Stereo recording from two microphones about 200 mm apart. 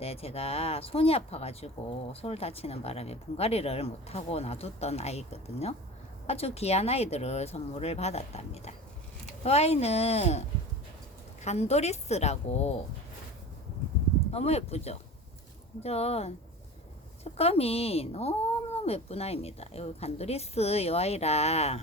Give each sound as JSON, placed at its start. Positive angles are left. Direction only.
{"t": 0.0, "sound": "speech", "side_deg": 30}
{"t": 11.4, "sound": "speech", "side_deg": 35}
{"t": 14.3, "sound": "speech", "side_deg": 30}
{"t": 17.3, "sound": "speech", "side_deg": 30}